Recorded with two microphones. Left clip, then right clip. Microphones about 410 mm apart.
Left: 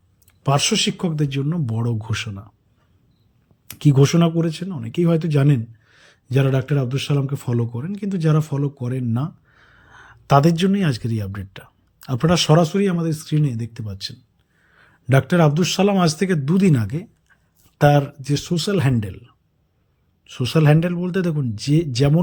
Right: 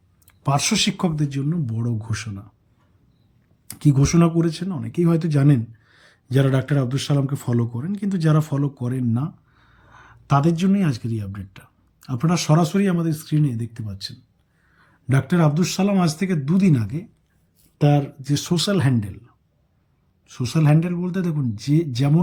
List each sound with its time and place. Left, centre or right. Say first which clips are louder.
0.3 s speech: left 3 dB; centre
3.7 s speech: left 4 dB; centre